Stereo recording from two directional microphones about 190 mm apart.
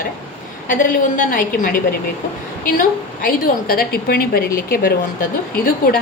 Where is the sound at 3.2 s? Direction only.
50° left (ahead or behind).